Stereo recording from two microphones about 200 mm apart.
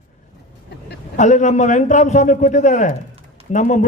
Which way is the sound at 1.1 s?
35° left (ahead or behind).